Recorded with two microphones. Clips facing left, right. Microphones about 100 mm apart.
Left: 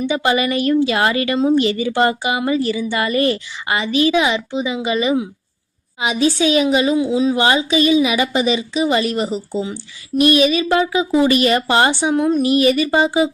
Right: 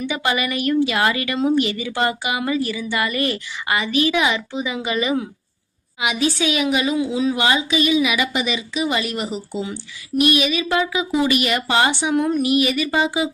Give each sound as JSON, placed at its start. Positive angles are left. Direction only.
{"t": 0.0, "sound": "a woman's voice", "side_deg": 25}
{"t": 6.0, "sound": "a woman's voice", "side_deg": 30}